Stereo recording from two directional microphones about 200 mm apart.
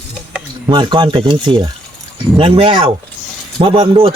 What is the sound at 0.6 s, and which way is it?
Speech, 25° right (ahead or behind).